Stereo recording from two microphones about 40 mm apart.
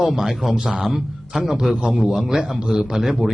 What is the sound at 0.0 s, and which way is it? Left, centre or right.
A man's voice, centre.